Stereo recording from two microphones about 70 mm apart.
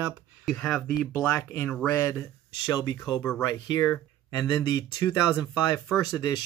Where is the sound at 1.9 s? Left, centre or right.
Left.